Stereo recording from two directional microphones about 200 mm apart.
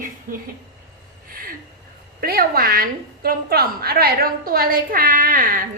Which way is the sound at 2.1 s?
50° right (ahead or behind).